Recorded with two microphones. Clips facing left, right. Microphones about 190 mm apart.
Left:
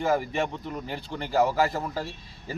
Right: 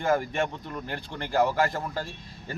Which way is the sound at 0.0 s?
Centre (ahead or behind).